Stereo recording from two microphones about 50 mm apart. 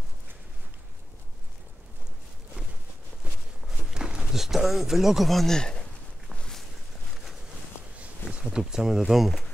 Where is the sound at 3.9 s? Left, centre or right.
Centre.